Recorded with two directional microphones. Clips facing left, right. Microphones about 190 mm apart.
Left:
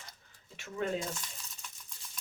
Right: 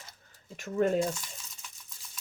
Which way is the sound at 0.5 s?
45° right (ahead or behind).